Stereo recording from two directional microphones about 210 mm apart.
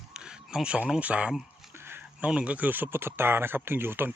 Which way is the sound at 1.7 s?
10° right (ahead or behind).